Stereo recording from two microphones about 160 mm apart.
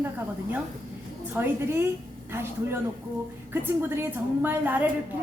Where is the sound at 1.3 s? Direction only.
15° right (ahead or behind).